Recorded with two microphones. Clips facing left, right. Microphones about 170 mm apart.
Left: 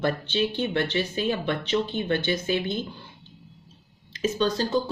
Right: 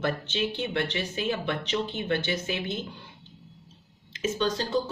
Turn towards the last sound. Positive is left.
turn(degrees=35)  # may be behind; listen again after turning